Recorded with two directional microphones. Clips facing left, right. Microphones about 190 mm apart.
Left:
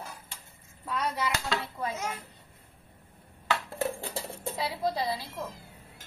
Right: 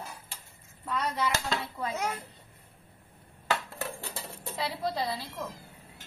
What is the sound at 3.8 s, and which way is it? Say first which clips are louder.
Music: left 6 dB; 25° left (ahead or behind).